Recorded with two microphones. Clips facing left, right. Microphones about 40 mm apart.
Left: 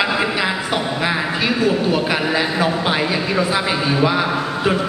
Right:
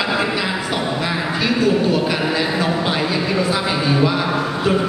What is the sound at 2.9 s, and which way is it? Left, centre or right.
A man's voice, centre.